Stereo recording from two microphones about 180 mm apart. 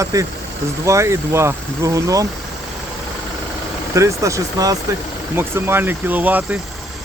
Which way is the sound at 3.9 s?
15° right (ahead or behind).